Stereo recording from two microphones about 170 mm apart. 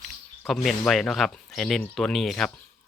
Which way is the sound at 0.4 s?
Centre (ahead or behind).